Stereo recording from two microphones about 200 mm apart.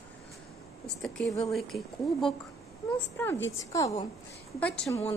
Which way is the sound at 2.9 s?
10° left (ahead or behind).